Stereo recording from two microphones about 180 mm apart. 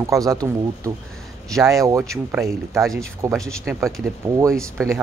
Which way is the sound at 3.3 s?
Centre (ahead or behind).